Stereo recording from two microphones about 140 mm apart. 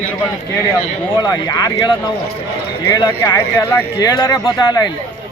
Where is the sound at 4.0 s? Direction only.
30° left (ahead or behind).